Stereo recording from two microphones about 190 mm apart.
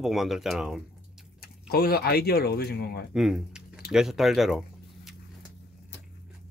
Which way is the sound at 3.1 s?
5° right (ahead or behind).